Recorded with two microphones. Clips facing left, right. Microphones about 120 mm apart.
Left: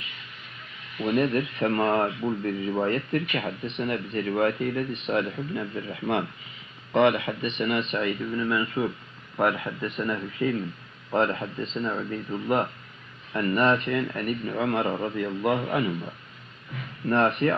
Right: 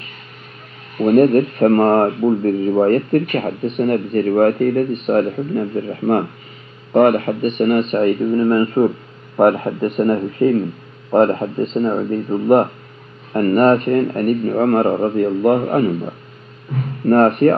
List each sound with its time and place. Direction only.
0.9 s speech: 45° right (ahead or behind)